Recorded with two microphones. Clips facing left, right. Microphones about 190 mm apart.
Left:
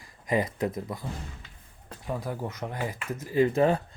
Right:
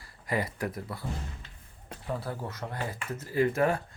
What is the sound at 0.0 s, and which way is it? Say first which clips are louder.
Speech: left 4 dB; 20° left (ahead or behind).